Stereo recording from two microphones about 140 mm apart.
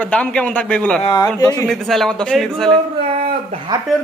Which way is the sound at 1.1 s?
30° left (ahead or behind).